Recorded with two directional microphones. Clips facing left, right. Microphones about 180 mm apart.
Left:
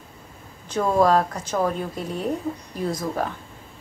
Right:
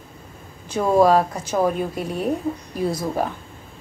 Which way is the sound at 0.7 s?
10° right (ahead or behind).